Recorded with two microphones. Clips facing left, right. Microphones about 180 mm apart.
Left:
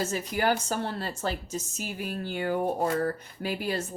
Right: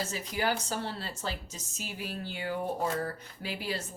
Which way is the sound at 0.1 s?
50° left (ahead or behind).